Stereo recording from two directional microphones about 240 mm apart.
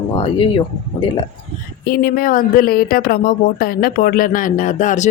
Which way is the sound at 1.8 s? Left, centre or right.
Left.